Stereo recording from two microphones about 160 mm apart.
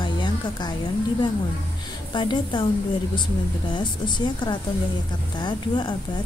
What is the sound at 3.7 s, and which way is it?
Speech, 30° left (ahead or behind).